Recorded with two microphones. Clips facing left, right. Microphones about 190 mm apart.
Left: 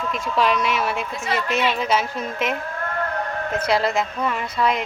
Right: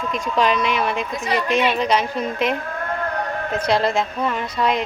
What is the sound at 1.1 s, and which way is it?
Speech, 15° right (ahead or behind).